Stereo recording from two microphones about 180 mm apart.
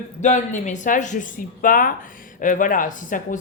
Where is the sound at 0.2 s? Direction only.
40° left (ahead or behind).